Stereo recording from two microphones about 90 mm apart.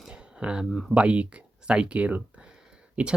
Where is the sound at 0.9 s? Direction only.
10° right (ahead or behind).